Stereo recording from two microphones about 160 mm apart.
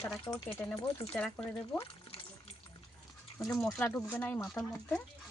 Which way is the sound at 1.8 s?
35° left (ahead or behind).